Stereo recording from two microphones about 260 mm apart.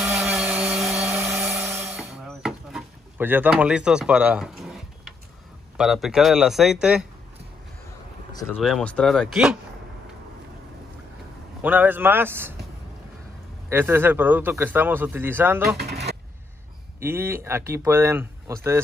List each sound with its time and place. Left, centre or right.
0.0 s helicopter: centre
5.8 s speech: centre
8.3 s a sound: centre
8.5 s speech: centre
11.6 s speech: centre
13.7 s speech: centre
15.8 s vehicle: right
17.0 s speech: centre